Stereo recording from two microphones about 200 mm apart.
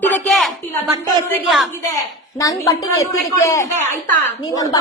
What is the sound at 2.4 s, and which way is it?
Speech, 15° left (ahead or behind).